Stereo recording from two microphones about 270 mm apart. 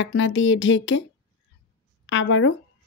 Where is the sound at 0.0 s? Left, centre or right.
Left.